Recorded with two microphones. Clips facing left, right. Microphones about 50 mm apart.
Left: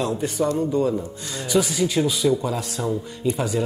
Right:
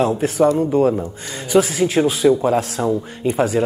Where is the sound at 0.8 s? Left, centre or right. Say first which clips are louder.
Right 6 dB; right.